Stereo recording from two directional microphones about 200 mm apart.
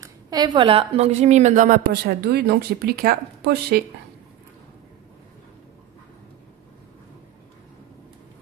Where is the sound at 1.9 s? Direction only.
50° right (ahead or behind).